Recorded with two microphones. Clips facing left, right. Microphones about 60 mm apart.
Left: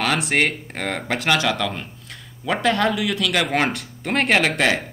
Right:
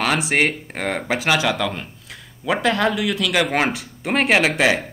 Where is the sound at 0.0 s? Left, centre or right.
Centre.